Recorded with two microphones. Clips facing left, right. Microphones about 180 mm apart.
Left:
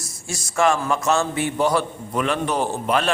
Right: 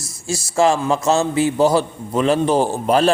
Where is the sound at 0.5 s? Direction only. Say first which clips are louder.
Right 3 dB; 25° right (ahead or behind).